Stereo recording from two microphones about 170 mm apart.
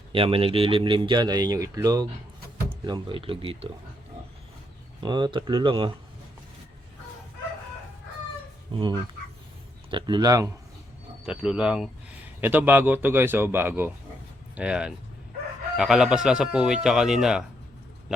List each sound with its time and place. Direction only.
0.1 s speech: 30° right (ahead or behind)
4.9 s speech: 25° right (ahead or behind)
8.7 s speech: 30° right (ahead or behind)
11.3 s speech: 5° right (ahead or behind)